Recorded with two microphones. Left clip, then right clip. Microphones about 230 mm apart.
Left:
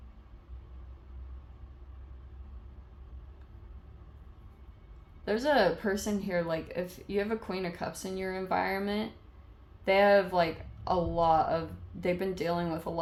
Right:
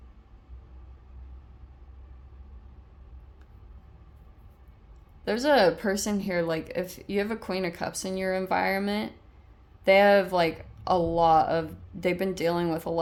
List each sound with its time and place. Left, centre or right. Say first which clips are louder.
5.2 s a woman's voice: right 5 dB; right